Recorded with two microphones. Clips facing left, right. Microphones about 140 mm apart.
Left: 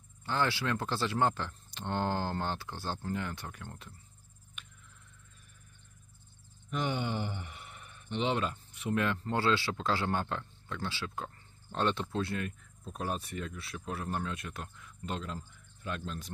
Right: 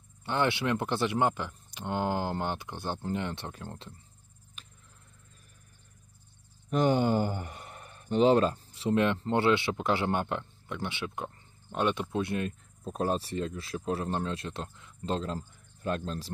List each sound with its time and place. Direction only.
0.2 s speech: 20° right (ahead or behind)
4.6 s a sound: 35° right (ahead or behind)
6.7 s speech: 40° right (ahead or behind); by 12.5 s 20° right (ahead or behind)
12.8 s speech: 40° right (ahead or behind)